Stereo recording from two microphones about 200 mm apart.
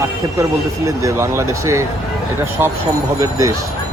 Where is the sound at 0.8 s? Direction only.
15° right (ahead or behind).